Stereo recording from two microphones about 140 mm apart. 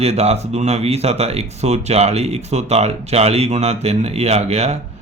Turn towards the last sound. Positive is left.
turn(degrees=-50)  # may be behind; listen again after turning